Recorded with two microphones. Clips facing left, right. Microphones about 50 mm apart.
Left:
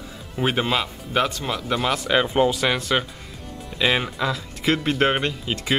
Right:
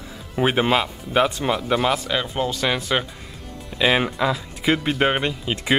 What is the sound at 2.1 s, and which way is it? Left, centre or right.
Speech, centre.